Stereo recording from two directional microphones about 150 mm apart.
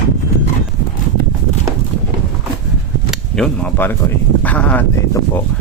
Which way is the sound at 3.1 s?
5° left (ahead or behind).